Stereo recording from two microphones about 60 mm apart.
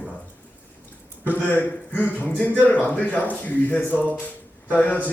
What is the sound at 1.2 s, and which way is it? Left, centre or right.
Speech, left.